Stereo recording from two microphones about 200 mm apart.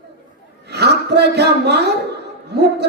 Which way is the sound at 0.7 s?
55° right (ahead or behind).